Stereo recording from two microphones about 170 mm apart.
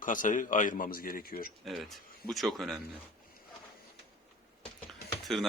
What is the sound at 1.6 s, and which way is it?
Speech, centre (ahead or behind).